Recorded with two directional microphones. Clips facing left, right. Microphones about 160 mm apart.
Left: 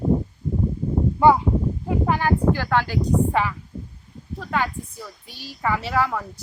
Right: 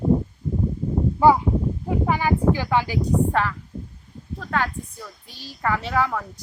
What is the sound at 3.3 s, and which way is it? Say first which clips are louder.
A woman's voice: even; 5° left (ahead or behind).